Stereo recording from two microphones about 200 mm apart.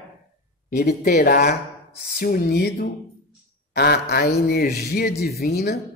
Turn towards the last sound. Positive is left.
turn(degrees=50)  # may be behind; listen again after turning